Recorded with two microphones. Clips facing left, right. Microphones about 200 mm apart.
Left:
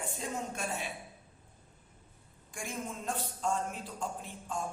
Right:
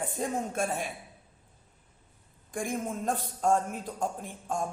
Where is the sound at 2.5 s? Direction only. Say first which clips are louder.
Right 7 dB; 55° right (ahead or behind).